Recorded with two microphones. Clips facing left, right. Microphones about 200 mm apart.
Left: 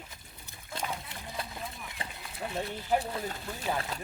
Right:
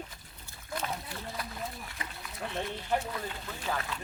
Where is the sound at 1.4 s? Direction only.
25° left (ahead or behind).